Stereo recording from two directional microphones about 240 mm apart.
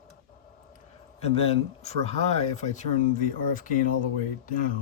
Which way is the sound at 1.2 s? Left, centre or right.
Left.